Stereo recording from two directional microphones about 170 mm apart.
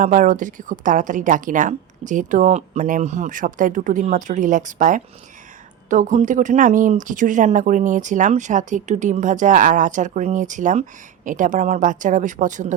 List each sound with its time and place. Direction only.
0.0 s speech: 50° right (ahead or behind)